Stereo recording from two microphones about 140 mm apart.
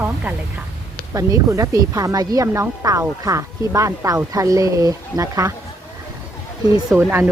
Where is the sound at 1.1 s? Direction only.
20° right (ahead or behind).